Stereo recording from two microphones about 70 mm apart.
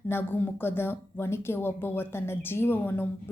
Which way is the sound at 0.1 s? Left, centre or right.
Left.